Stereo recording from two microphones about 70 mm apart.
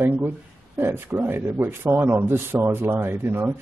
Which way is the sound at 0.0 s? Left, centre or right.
Right.